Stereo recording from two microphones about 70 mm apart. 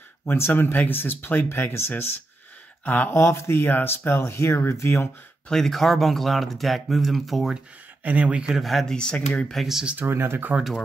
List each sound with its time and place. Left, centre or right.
0.2 s speech: left
2.8 s speech: left
3.1 s speech: left
5.5 s speech: centre
8.0 s speech: right
8.5 s speech: centre
8.9 s speech: centre
9.5 s speech: centre
10.0 s speech: right